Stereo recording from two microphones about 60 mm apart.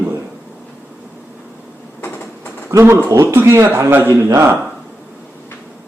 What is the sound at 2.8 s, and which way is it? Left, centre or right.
Speech, right.